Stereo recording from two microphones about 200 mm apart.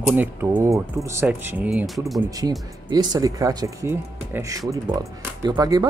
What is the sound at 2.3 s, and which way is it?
Speech, 20° right (ahead or behind).